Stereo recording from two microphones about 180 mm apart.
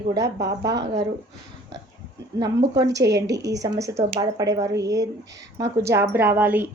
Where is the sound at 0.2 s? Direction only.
70° right (ahead or behind).